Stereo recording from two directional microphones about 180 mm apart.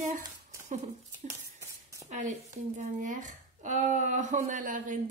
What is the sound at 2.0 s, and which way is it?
Speech, 40° right (ahead or behind).